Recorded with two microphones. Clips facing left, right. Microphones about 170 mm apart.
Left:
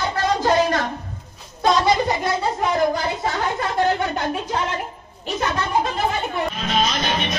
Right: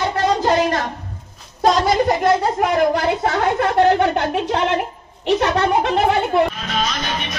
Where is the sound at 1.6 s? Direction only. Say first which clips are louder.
Right 2 dB; 45° right (ahead or behind).